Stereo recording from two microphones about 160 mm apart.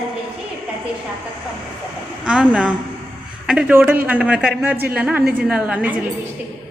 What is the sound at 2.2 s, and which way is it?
A woman's voice, 5° right (ahead or behind).